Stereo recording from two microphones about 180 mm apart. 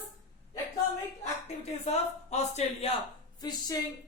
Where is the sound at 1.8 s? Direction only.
40° left (ahead or behind).